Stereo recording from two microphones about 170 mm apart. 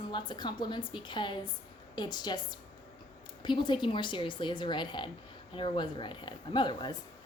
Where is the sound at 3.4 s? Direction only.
25° left (ahead or behind).